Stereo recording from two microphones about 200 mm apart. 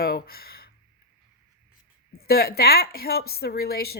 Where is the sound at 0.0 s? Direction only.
50° left (ahead or behind).